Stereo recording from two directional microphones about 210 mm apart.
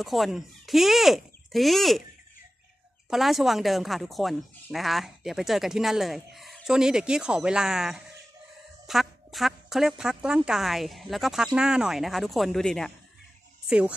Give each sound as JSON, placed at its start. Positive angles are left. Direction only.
{"t": 0.0, "sound": "a woman's voice", "side_deg": 0}
{"t": 3.1, "sound": "a woman's voice", "side_deg": 0}